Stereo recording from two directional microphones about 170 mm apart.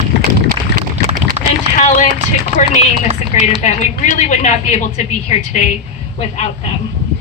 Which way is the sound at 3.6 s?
45° left (ahead or behind).